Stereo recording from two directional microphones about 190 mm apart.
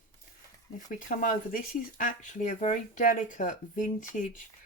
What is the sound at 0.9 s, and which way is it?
Speech, 45° left (ahead or behind).